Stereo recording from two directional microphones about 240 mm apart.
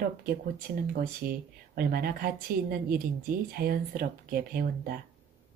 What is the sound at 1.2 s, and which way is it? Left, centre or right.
A woman's voice, right.